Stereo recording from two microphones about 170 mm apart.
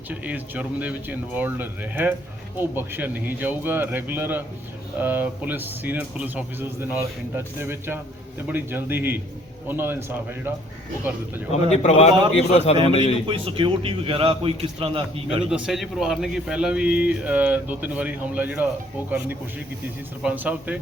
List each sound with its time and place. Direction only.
0.1 s a man's voice: 10° right (ahead or behind)
11.7 s a man's voice: 40° left (ahead or behind)
12.7 s a man's voice: 30° right (ahead or behind)
15.4 s a man's voice: 5° right (ahead or behind)
20.2 s a man's voice: 10° right (ahead or behind)